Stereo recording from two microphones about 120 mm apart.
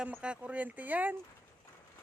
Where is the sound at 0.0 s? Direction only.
10° right (ahead or behind).